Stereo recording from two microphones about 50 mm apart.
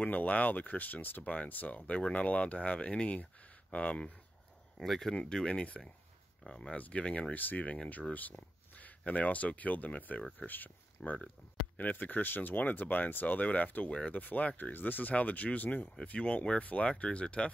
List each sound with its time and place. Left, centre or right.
0.0 s speech: left
4.7 s speech: centre
5.5 s speech: left
7.3 s speech: left
11.0 s speech: left
11.7 s speech: left
13.8 s speech: left
14.2 s speech: left